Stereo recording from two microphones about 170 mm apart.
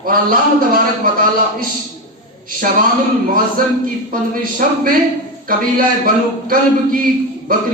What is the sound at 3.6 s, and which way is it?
A man's voice, 55° right (ahead or behind).